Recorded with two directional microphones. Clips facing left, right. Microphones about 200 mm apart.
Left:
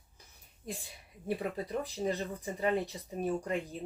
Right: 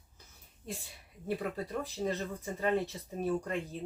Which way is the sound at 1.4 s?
15° left (ahead or behind).